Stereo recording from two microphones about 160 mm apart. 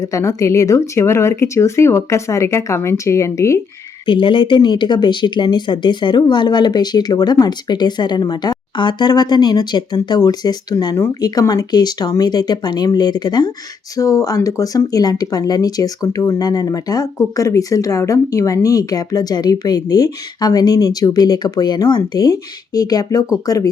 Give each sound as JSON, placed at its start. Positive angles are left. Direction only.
{"t": 0.0, "sound": "speech", "side_deg": 20}
{"t": 4.0, "sound": "speech", "side_deg": 30}